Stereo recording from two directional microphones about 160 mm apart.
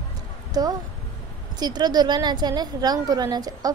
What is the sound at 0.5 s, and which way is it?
A woman's voice, 25° right (ahead or behind).